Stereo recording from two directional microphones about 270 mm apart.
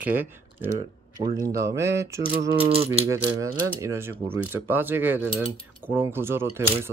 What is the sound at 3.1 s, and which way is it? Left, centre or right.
Speech, centre.